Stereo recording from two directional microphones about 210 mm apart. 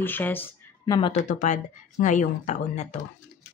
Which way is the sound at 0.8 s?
25° left (ahead or behind).